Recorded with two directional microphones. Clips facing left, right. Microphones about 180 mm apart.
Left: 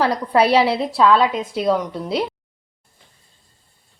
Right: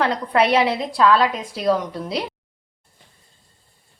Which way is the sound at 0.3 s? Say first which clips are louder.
Left 2 dB; 30° left (ahead or behind).